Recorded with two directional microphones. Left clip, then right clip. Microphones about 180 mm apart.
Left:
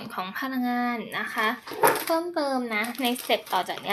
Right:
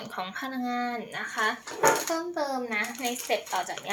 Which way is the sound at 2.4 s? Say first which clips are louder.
Left 3 dB; 40° left (ahead or behind).